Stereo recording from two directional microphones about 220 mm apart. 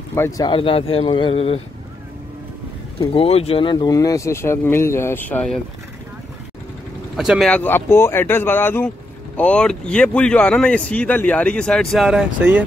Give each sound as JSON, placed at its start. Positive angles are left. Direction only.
{"t": 0.1, "sound": "speech", "side_deg": 15}
{"t": 3.0, "sound": "speech", "side_deg": 25}
{"t": 7.2, "sound": "speech", "side_deg": 0}